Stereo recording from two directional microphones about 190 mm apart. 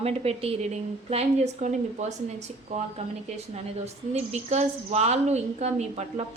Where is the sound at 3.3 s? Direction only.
35° right (ahead or behind).